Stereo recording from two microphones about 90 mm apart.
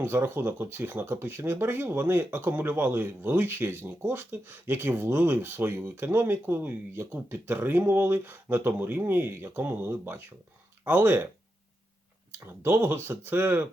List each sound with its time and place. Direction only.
0.0 s speech: 25° right (ahead or behind)
12.5 s speech: 25° right (ahead or behind)